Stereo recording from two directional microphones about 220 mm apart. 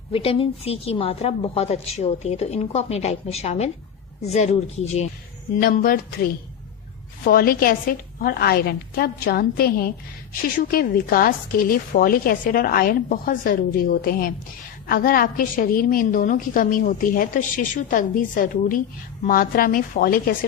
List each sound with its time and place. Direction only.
0.1 s a woman's voice: 25° left (ahead or behind)
5.5 s a woman's voice: 40° left (ahead or behind)
7.3 s a woman's voice: 40° left (ahead or behind)